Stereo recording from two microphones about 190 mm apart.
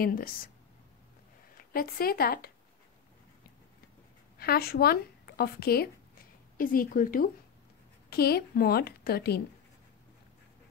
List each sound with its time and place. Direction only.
0.0 s speech: 50° left (ahead or behind)
1.6 s speech: 50° left (ahead or behind)
4.4 s a woman's voice: 55° left (ahead or behind)